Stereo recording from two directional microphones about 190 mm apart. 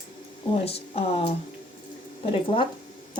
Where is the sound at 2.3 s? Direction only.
30° left (ahead or behind).